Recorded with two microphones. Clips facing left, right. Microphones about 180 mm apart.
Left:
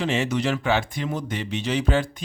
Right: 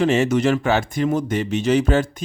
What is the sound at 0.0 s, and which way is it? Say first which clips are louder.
Speech: right 7 dB; 45° right (ahead or behind).